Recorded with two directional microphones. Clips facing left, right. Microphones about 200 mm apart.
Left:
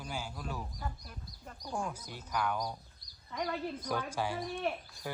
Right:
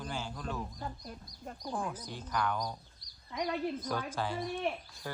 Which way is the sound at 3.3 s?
15° right (ahead or behind).